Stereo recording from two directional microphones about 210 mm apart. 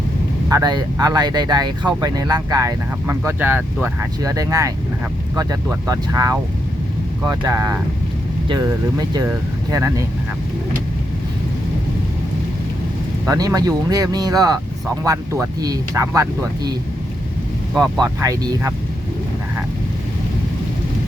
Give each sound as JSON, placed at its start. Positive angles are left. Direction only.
{"t": 0.4, "sound": "speech", "side_deg": -15}
{"t": 13.2, "sound": "speech", "side_deg": -15}
{"t": 18.0, "sound": "speech", "side_deg": -15}